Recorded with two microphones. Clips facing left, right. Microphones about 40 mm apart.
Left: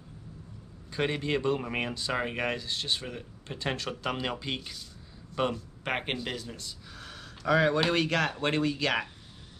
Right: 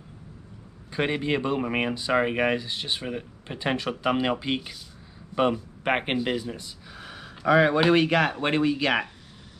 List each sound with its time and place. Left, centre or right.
0.9 s speech: centre